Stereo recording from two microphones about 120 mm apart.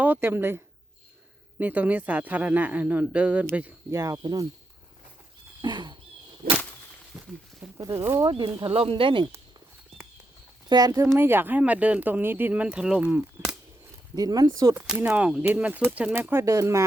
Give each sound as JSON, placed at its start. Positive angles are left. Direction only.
{"t": 0.0, "sound": "speech", "side_deg": -15}
{"t": 3.9, "sound": "speech", "side_deg": -30}
{"t": 5.6, "sound": "speech", "side_deg": -40}
{"t": 7.1, "sound": "a sound", "side_deg": 0}
{"t": 7.8, "sound": "speech", "side_deg": -25}
{"t": 8.2, "sound": "speech", "side_deg": -40}
{"t": 8.6, "sound": "speech", "side_deg": -50}
{"t": 10.7, "sound": "speech", "side_deg": -30}
{"t": 14.2, "sound": "speech", "side_deg": -30}
{"t": 14.8, "sound": "speech", "side_deg": -10}